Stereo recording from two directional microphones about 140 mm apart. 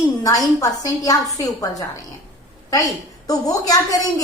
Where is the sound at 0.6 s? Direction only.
25° left (ahead or behind).